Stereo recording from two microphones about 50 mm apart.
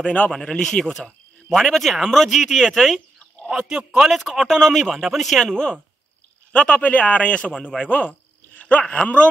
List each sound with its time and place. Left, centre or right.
0.0 s speech: left; by 5.5 s centre
5.5 s speech: centre
6.8 s speech: left
7.9 s speech: left